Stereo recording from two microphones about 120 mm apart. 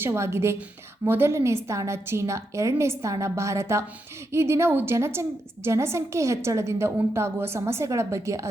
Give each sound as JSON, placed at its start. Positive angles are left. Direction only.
{"t": 0.0, "sound": "a woman's voice", "side_deg": -20}